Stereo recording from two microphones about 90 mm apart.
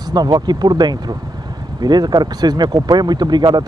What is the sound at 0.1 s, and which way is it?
Speech, 50° right (ahead or behind).